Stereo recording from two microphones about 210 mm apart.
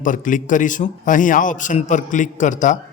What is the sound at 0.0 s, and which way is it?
Speech, 40° left (ahead or behind).